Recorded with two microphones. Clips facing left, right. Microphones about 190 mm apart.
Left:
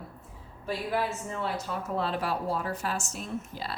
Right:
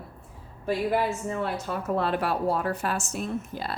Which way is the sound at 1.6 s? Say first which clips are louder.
Right 4 dB; 60° right (ahead or behind).